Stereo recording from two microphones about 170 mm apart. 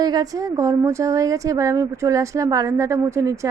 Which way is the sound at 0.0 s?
25° right (ahead or behind).